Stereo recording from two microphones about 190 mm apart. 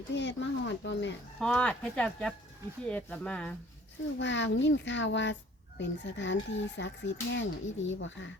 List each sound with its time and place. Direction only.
0.2 s speech: 70° left (ahead or behind)
1.4 s speech: 5° left (ahead or behind)
4.2 s speech: 70° left (ahead or behind)